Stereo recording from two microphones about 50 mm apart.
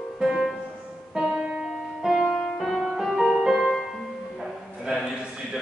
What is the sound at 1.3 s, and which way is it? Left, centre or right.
Music, centre.